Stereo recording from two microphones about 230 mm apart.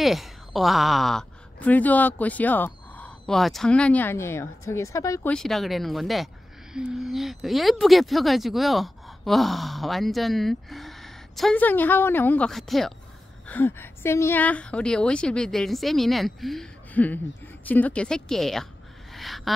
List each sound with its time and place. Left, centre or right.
0.0 s a woman's voice: centre
5.3 s speech: centre
19.1 s a sound: centre